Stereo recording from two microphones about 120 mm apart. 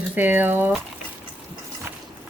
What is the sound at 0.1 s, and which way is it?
Speech, 15° right (ahead or behind).